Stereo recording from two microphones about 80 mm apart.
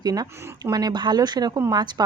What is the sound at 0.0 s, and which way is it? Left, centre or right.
A woman's voice, right.